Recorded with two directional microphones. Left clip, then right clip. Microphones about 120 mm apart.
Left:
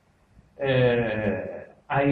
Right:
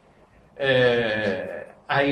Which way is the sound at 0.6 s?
40° right (ahead or behind).